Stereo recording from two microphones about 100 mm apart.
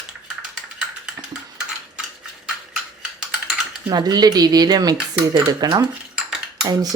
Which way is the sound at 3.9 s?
45° right (ahead or behind).